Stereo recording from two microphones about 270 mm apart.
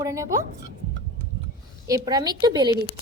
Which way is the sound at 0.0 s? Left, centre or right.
Centre.